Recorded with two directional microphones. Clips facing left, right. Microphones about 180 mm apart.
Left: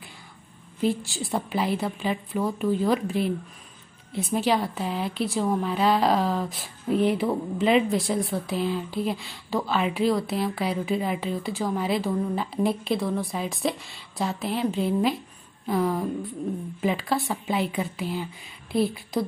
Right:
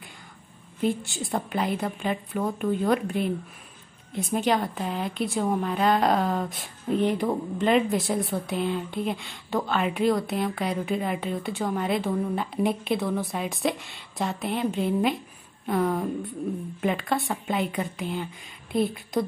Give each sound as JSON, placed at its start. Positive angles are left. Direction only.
{"t": 0.7, "sound": "a woman's voice", "side_deg": 0}